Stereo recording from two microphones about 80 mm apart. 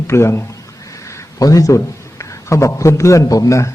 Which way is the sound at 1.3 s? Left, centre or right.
Left.